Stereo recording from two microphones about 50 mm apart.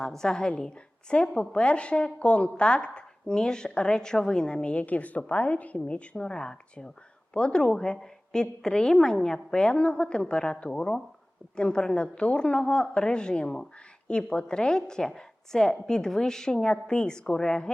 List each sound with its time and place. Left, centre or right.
0.0 s a woman's voice: centre